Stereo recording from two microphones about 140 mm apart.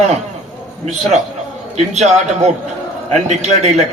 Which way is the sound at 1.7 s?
50° right (ahead or behind).